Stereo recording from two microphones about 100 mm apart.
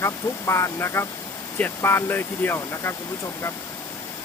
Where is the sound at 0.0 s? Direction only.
30° left (ahead or behind).